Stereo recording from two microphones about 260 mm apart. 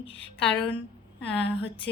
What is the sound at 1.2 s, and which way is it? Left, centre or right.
Speech, left.